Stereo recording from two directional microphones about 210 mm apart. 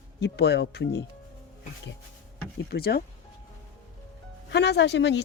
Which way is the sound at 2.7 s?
50° left (ahead or behind).